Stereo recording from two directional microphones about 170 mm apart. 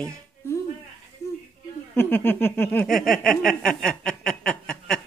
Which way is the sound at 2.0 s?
10° left (ahead or behind).